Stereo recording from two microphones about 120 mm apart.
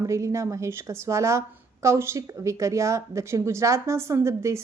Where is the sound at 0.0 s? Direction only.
25° right (ahead or behind).